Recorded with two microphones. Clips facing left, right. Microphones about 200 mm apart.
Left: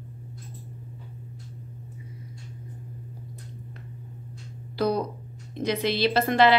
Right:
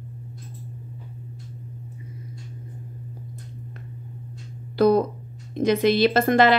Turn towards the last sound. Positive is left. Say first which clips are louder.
# right 2 dB
turn(degrees=-50)  # may be behind; listen again after turning